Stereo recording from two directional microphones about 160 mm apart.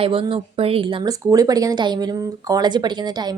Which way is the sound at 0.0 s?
35° right (ahead or behind).